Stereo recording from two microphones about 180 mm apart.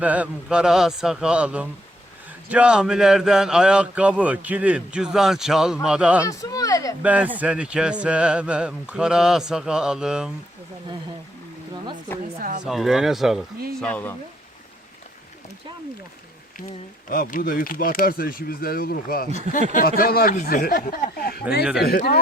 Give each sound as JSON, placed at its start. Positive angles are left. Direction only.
{"t": 0.0, "sound": "speech", "side_deg": -10}
{"t": 6.2, "sound": "speech", "side_deg": 20}
{"t": 7.0, "sound": "speech", "side_deg": -10}
{"t": 12.4, "sound": "speech", "side_deg": -50}
{"t": 12.6, "sound": "speech", "side_deg": 0}
{"t": 13.8, "sound": "speech", "side_deg": 10}
{"t": 17.1, "sound": "speech", "side_deg": 50}
{"t": 21.6, "sound": "speech", "side_deg": -5}
{"t": 21.8, "sound": "speech", "side_deg": 60}